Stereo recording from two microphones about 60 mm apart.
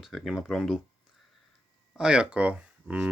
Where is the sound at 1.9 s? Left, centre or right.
Centre.